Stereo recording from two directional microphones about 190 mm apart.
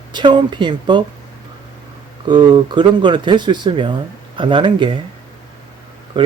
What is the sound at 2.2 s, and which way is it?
Speech, 25° right (ahead or behind).